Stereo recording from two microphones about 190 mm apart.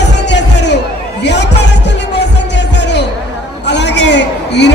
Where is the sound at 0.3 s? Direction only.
65° left (ahead or behind).